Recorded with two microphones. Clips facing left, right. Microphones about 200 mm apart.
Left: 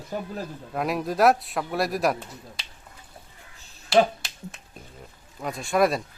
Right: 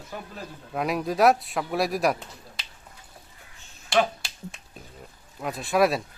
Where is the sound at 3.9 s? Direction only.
Centre (ahead or behind).